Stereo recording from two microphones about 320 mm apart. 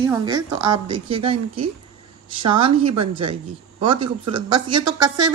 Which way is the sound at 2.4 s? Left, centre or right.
Centre.